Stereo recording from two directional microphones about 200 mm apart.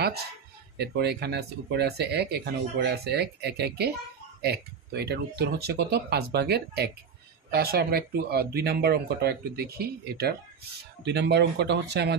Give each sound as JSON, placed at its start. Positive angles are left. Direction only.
{"t": 0.7, "sound": "speech", "side_deg": -55}